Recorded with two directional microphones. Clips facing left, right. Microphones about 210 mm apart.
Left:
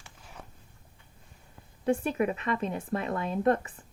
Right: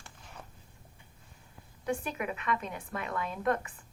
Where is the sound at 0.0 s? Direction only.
5° left (ahead or behind).